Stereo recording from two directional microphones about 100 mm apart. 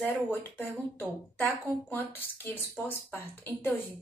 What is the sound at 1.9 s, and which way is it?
A woman's voice, 20° left (ahead or behind).